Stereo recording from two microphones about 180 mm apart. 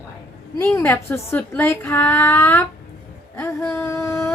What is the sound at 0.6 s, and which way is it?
A woman's voice, 15° left (ahead or behind).